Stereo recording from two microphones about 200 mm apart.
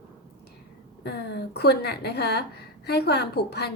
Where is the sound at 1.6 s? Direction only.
55° left (ahead or behind).